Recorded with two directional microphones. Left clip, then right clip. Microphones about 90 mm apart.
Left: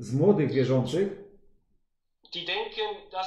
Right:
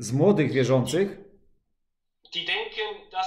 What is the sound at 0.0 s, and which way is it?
Speech, 20° right (ahead or behind).